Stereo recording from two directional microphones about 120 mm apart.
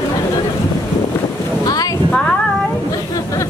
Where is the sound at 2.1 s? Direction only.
10° left (ahead or behind).